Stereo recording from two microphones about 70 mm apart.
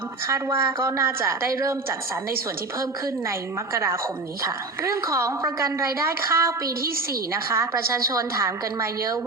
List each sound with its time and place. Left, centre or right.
0.3 s a woman's voice: right
3.2 s a woman's voice: right
7.5 s a woman's voice: right